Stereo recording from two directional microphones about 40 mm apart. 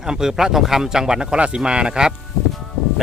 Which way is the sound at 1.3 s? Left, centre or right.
Right.